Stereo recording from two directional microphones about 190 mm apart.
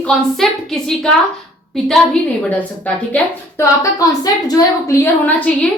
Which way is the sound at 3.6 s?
20° left (ahead or behind).